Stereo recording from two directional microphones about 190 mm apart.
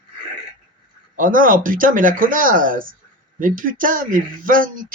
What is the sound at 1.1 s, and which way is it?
Speech, 45° right (ahead or behind).